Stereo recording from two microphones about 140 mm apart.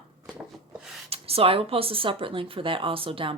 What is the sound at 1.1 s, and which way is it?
Speech, 45° right (ahead or behind).